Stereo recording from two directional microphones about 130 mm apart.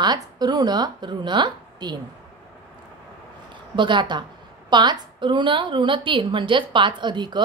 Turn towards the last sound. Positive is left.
turn(degrees=-35)  # may be behind; listen again after turning